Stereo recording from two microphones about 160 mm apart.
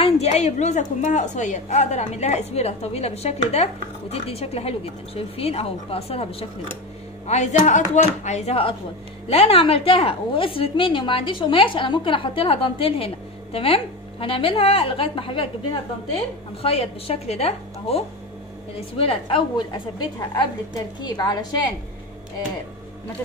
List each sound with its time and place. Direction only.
0.0 s a woman's voice: 40° left (ahead or behind)
7.2 s a woman's voice: 45° left (ahead or behind)
21.0 s a woman's voice: 25° left (ahead or behind)